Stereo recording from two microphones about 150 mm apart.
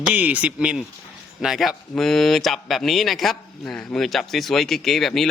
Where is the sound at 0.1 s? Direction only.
10° right (ahead or behind).